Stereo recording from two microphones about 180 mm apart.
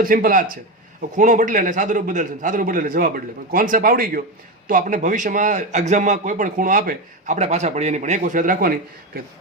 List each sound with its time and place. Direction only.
0.0 s a man's voice: 50° right (ahead or behind)